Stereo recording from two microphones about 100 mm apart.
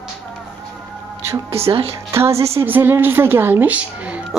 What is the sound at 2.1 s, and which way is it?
A woman's voice, 25° right (ahead or behind).